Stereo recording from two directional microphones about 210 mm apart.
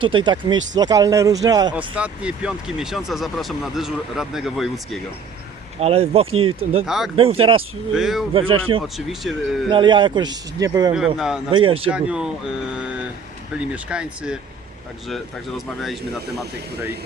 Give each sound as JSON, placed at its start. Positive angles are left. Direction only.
{"t": 0.0, "sound": "a man's voice", "side_deg": -25}
{"t": 2.0, "sound": "speech", "side_deg": -5}
{"t": 5.8, "sound": "a man's voice", "side_deg": -30}
{"t": 6.8, "sound": "speech", "side_deg": 0}
{"t": 7.2, "sound": "a man's voice", "side_deg": -25}
{"t": 7.9, "sound": "speech", "side_deg": 0}
{"t": 8.3, "sound": "a man's voice", "side_deg": -25}
{"t": 9.0, "sound": "speech", "side_deg": 0}
{"t": 9.6, "sound": "a man's voice", "side_deg": -25}
{"t": 10.9, "sound": "speech", "side_deg": 0}
{"t": 11.5, "sound": "a man's voice", "side_deg": -25}
{"t": 11.9, "sound": "speech", "side_deg": -5}